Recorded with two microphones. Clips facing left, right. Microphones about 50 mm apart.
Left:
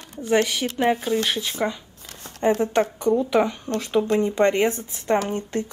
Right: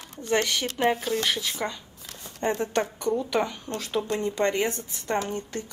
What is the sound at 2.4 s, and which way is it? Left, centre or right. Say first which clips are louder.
Speech: left 6 dB; centre.